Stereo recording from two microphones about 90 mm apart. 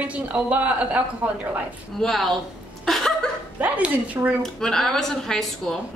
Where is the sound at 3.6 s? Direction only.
15° right (ahead or behind).